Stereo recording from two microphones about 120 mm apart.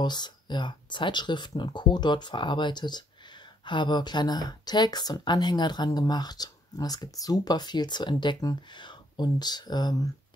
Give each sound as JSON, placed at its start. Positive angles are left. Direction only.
{"t": 0.0, "sound": "a woman's voice", "side_deg": 35}